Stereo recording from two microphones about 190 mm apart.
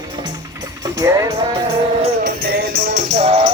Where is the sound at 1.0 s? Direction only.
15° right (ahead or behind).